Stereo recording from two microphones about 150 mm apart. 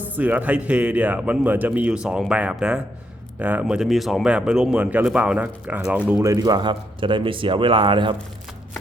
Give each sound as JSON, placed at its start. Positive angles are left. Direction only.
{"t": 0.2, "sound": "a man's voice", "side_deg": -10}
{"t": 6.2, "sound": "speech", "side_deg": -25}